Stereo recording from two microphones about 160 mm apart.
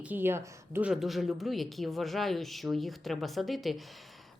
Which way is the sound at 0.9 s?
Centre (ahead or behind).